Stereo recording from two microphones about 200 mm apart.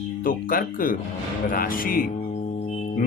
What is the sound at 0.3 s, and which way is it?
Speech, 45° left (ahead or behind).